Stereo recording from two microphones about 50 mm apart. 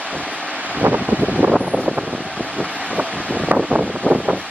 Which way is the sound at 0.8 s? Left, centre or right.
Right.